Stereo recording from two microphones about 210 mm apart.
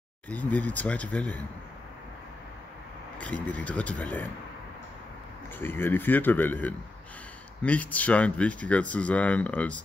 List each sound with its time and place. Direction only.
0.3 s speech: 5° left (ahead or behind)
3.2 s speech: 5° left (ahead or behind)
5.6 s speech: 10° left (ahead or behind)